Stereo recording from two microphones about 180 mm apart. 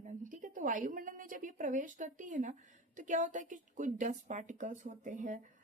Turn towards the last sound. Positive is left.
turn(degrees=-45)  # may be behind; listen again after turning